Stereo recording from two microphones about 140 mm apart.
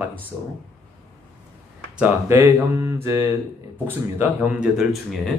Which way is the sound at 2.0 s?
15° right (ahead or behind).